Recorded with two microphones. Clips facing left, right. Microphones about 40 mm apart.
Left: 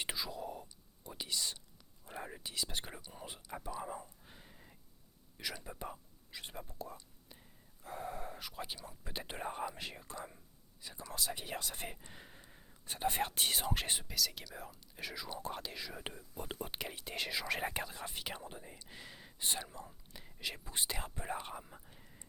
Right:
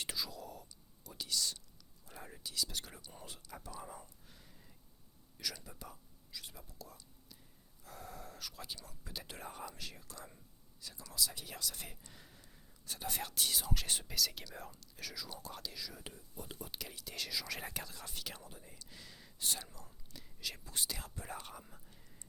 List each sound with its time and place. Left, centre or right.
0.0 s whispering: left
2.0 s speech: left
14.0 s speech: centre
14.8 s speech: left
21.7 s whispering: left